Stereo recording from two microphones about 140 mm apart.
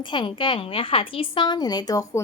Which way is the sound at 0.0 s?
35° left (ahead or behind).